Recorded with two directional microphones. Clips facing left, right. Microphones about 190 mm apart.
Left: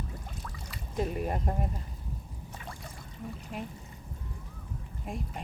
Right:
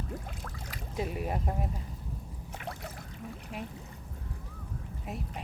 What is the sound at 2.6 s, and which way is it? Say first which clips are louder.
Trickle: right 5 dB; 70° right (ahead or behind).